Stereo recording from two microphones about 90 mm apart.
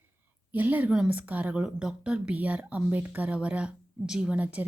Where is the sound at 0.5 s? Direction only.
20° right (ahead or behind).